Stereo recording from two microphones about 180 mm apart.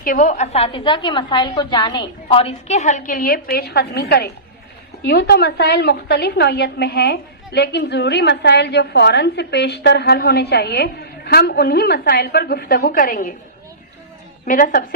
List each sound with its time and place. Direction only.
0.0 s a woman's voice: 45° left (ahead or behind)
14.4 s a woman's voice: 50° left (ahead or behind)